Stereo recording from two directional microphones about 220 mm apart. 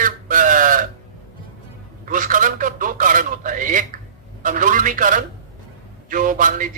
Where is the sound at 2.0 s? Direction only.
35° right (ahead or behind).